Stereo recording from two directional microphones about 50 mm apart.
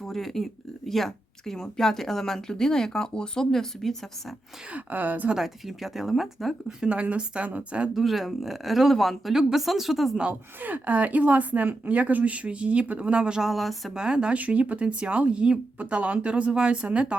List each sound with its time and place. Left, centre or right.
0.0 s a woman's voice: centre
4.7 s a woman's voice: right
5.4 s speech: centre
6.7 s speech: centre
7.9 s speech: centre
10.6 s speech: right
13.4 s speech: centre
13.9 s speech: centre
14.3 s speech: right